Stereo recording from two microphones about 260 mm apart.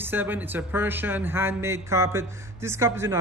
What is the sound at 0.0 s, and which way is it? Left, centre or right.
A man's voice, centre.